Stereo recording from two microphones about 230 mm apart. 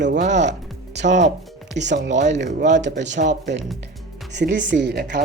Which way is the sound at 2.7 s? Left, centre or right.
Right.